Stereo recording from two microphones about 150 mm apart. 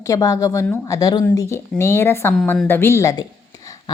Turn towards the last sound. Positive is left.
turn(degrees=20)  # may be behind; listen again after turning